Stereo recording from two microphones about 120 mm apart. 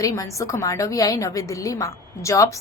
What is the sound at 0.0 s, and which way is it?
A woman's voice, 25° left (ahead or behind).